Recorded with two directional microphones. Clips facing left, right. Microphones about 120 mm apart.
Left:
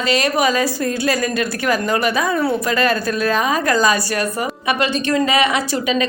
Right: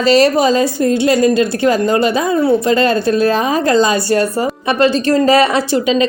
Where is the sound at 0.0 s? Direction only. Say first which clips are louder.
Right 7 dB; 35° right (ahead or behind).